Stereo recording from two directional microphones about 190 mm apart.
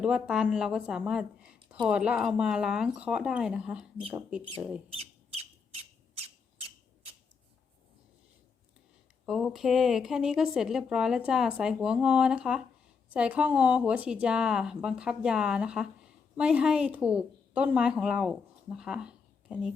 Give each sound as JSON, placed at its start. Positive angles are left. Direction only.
{"t": 0.0, "sound": "speech", "side_deg": -5}
{"t": 4.9, "sound": "squawk", "side_deg": -35}
{"t": 9.2, "sound": "a woman's voice", "side_deg": 0}